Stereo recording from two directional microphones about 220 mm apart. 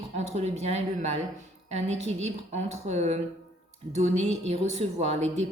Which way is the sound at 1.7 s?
30° right (ahead or behind).